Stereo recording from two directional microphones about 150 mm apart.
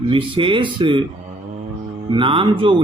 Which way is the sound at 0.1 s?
35° right (ahead or behind).